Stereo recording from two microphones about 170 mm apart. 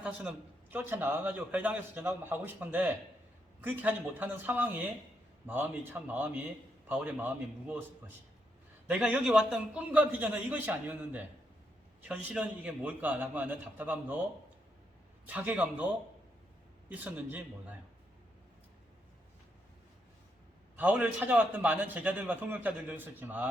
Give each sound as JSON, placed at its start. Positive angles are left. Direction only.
{"t": 0.0, "sound": "a man's voice", "side_deg": -5}
{"t": 15.3, "sound": "a man's voice", "side_deg": -10}
{"t": 16.9, "sound": "a man's voice", "side_deg": -10}
{"t": 20.7, "sound": "a man's voice", "side_deg": -10}